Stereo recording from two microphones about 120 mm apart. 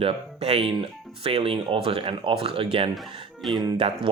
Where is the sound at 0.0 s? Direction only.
60° right (ahead or behind).